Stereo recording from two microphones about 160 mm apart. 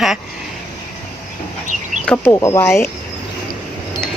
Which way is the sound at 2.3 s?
20° left (ahead or behind).